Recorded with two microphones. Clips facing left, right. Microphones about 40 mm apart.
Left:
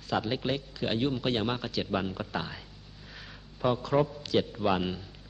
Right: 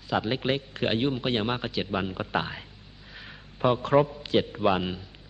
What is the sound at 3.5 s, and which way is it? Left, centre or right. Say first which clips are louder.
Speech: right 5 dB; right.